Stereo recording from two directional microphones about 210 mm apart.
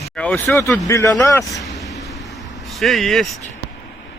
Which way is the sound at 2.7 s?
Centre (ahead or behind).